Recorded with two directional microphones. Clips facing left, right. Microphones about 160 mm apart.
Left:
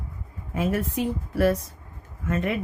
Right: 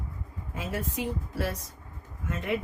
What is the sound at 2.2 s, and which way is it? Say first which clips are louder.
Speech: left 9 dB; 65° left (ahead or behind).